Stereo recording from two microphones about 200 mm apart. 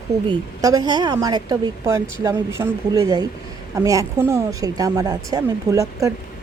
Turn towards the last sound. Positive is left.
turn(degrees=-15)  # may be behind; listen again after turning